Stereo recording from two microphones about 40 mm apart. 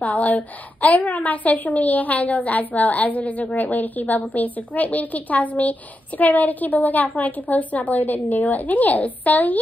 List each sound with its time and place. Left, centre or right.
0.0 s a woman's voice: left